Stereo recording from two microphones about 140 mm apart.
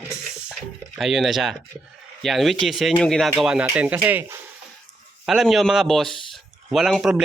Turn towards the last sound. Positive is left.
turn(degrees=0)  # may be behind; listen again after turning